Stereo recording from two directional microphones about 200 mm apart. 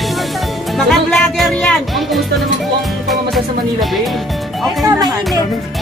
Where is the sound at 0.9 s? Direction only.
Centre (ahead or behind).